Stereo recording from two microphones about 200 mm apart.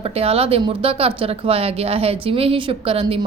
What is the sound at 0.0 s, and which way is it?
Speech, 30° right (ahead or behind).